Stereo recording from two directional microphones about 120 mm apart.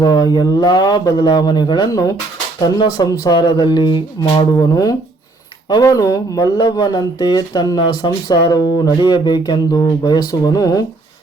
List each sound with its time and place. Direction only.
0.0 s speech: 35° left (ahead or behind)